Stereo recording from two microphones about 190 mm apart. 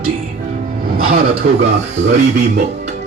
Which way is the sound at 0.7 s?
50° right (ahead or behind).